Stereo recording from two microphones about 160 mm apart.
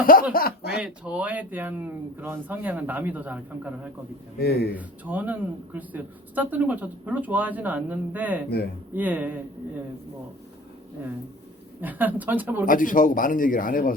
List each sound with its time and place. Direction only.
0.0 s speech: 60° left (ahead or behind)
0.3 s speech: 80° left
0.8 s speech: 5° right (ahead or behind)
4.4 s speech: 85° left
4.7 s speech: 10° right (ahead or behind)
11.8 s speech: 10° right (ahead or behind)
12.6 s speech: 60° left (ahead or behind)